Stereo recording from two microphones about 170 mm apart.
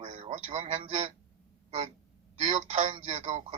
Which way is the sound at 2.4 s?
40° right (ahead or behind).